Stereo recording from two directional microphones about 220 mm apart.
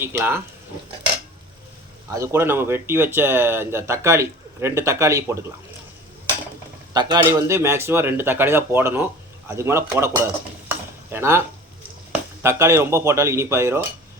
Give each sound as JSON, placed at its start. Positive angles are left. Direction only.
{"t": 0.0, "sound": "speech", "side_deg": -10}
{"t": 2.0, "sound": "speech", "side_deg": -15}
{"t": 6.9, "sound": "speech", "side_deg": -20}